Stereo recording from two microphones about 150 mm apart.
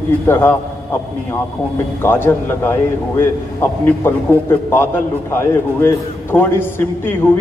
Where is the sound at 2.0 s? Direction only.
15° left (ahead or behind).